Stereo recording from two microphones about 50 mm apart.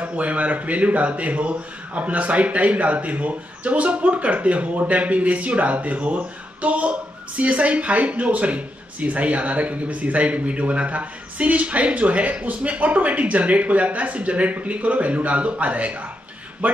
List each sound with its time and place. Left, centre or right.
0.0 s a man's voice: right